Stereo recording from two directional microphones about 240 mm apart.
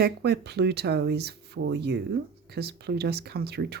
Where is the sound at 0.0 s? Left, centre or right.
Right.